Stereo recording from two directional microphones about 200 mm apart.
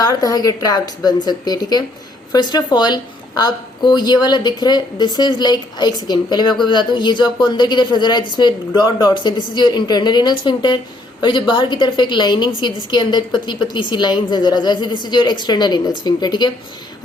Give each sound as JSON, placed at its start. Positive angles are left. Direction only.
{"t": 0.0, "sound": "a woman's voice", "side_deg": 20}